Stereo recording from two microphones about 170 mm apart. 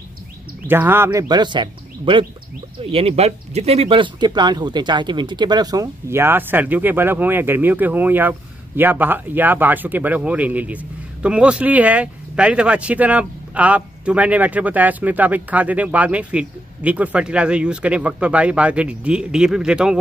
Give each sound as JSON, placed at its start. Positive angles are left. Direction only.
{"t": 0.7, "sound": "speech", "side_deg": -10}